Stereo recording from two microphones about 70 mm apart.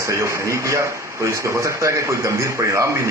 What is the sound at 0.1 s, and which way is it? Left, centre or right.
A man's voice, right.